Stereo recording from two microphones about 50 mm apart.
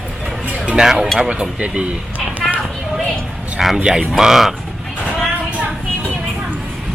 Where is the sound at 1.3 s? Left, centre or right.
Right.